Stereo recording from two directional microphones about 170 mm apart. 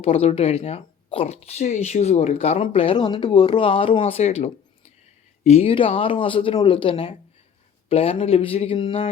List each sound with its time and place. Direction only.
0.0 s speech: 35° left (ahead or behind)